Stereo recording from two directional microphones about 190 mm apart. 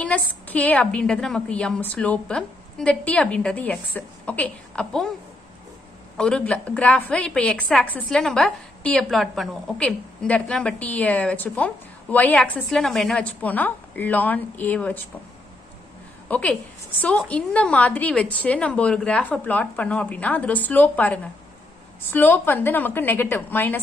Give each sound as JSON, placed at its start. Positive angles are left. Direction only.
{"t": 0.0, "sound": "a woman's voice", "side_deg": 10}
{"t": 6.1, "sound": "a woman's voice", "side_deg": 5}
{"t": 16.3, "sound": "a woman's voice", "side_deg": 5}